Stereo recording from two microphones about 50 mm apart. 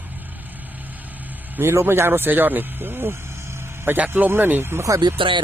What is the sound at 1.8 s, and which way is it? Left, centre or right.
Speech, right.